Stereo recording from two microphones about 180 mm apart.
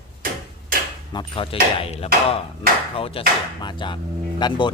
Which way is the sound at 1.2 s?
30° left (ahead or behind).